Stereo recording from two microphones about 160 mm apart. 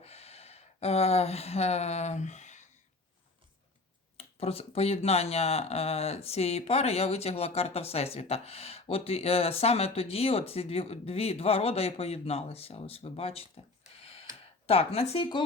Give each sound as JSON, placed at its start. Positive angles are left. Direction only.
{"t": 0.0, "sound": "a sound", "side_deg": 40}
{"t": 4.2, "sound": "speech", "side_deg": 40}
{"t": 14.7, "sound": "speech", "side_deg": 35}